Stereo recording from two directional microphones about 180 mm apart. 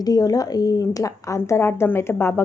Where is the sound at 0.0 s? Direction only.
20° left (ahead or behind).